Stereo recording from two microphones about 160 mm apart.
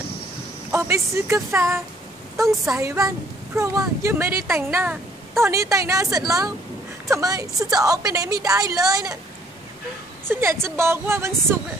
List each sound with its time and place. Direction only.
0.7 s a woman's voice: 20° right (ahead or behind)
10.2 s a woman's voice: 15° right (ahead or behind)